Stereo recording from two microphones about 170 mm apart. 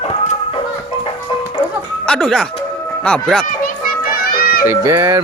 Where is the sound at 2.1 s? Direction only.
5° left (ahead or behind).